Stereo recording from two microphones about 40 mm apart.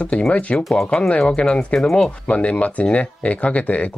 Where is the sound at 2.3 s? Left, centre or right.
Left.